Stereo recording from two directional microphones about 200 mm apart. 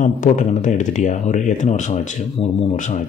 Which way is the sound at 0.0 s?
40° left (ahead or behind).